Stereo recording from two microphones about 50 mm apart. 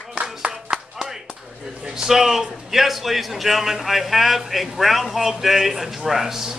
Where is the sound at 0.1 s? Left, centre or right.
Centre.